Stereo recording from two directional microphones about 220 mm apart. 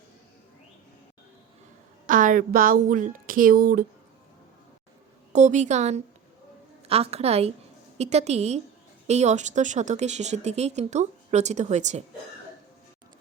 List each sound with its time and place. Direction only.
2.0 s speech: 35° right (ahead or behind)
5.3 s a woman's voice: 30° right (ahead or behind)